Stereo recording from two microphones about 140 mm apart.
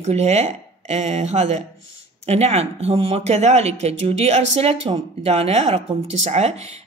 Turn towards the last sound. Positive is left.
turn(degrees=-50)  # may be behind; listen again after turning